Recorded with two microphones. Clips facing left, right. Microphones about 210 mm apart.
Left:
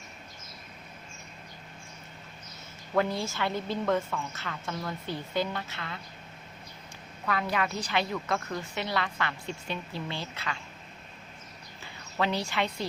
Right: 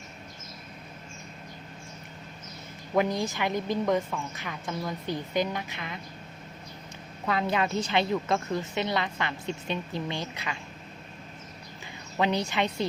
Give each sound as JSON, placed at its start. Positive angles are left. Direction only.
{"t": 2.9, "sound": "a woman's voice", "side_deg": -15}
{"t": 7.3, "sound": "a woman's voice", "side_deg": -25}
{"t": 12.1, "sound": "a woman's voice", "side_deg": -20}